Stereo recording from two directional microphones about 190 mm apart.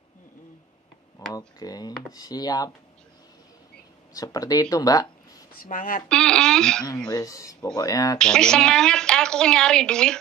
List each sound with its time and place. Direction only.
1.2 s speech: 20° left (ahead or behind)
4.1 s speech: 20° left (ahead or behind)
5.6 s speech: 45° left (ahead or behind)
6.0 s a woman's voice: 5° left (ahead or behind)
7.1 s speech: 20° left (ahead or behind)
8.2 s a woman's voice: 5° left (ahead or behind)